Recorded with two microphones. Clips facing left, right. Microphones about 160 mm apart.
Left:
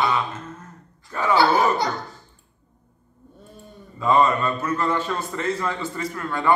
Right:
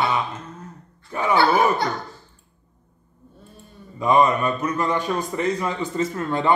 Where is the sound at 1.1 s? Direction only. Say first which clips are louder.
Even; 15° right (ahead or behind).